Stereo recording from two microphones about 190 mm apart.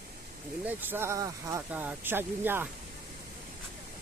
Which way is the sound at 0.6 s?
10° right (ahead or behind).